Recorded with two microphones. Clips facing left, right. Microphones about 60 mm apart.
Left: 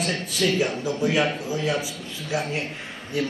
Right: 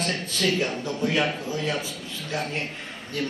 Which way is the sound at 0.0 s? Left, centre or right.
Centre.